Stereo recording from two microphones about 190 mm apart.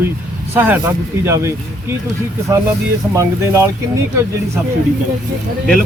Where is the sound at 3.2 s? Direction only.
15° right (ahead or behind).